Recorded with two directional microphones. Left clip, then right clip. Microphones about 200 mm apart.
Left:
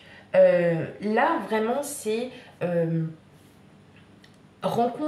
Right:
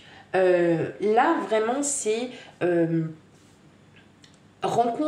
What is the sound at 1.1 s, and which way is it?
Speech, 35° right (ahead or behind).